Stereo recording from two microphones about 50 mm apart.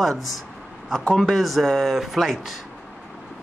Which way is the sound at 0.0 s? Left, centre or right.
Centre.